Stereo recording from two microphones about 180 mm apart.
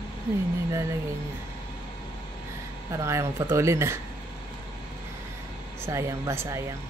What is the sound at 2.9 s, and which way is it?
Speech, 15° right (ahead or behind).